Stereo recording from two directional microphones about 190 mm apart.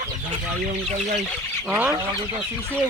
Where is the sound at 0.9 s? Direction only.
35° right (ahead or behind).